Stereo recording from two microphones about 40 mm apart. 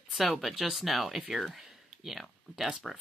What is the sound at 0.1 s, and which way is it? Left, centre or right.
Speech, centre.